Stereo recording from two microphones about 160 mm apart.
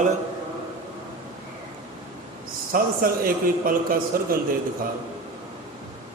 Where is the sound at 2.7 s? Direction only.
60° right (ahead or behind).